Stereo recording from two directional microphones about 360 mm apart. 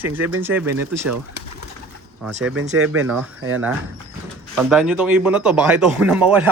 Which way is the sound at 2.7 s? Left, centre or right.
Right.